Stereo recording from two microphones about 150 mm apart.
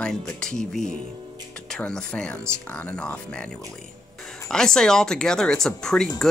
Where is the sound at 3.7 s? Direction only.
5° left (ahead or behind).